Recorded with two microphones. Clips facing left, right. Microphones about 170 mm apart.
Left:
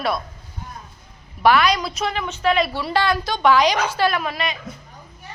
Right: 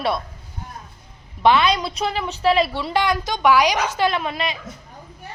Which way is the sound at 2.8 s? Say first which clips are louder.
Even; 20° right (ahead or behind).